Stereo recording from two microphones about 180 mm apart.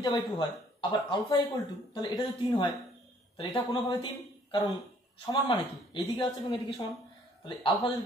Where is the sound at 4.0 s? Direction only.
25° left (ahead or behind).